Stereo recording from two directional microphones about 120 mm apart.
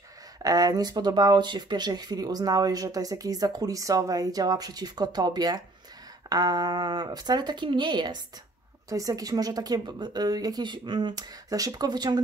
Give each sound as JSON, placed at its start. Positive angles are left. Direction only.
{"t": 0.4, "sound": "speech", "side_deg": -30}
{"t": 8.8, "sound": "speech", "side_deg": -30}